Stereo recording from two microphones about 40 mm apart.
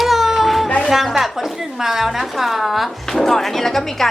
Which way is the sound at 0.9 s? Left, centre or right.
Centre.